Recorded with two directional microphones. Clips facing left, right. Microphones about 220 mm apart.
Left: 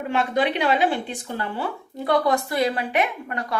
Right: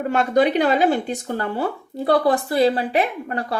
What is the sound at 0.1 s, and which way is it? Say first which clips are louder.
Speech: right 4 dB; 40° right (ahead or behind).